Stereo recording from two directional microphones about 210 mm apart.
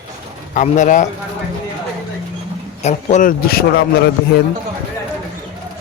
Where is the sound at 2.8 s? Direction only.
35° left (ahead or behind).